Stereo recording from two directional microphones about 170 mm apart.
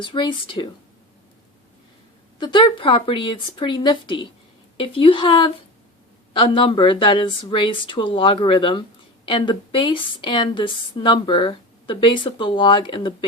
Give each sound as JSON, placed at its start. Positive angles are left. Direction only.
{"t": 0.0, "sound": "a woman's voice", "side_deg": 30}
{"t": 2.4, "sound": "a woman's voice", "side_deg": 30}